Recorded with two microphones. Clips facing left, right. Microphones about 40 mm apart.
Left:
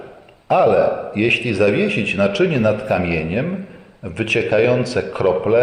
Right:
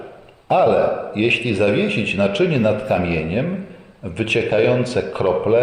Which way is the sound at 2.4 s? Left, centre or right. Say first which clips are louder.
Left 1 dB; left.